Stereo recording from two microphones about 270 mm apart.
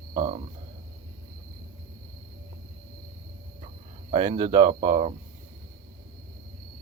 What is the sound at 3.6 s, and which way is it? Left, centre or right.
Speech, right.